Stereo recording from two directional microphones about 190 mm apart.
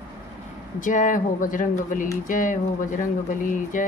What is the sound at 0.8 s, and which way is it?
A woman's voice, 40° left (ahead or behind).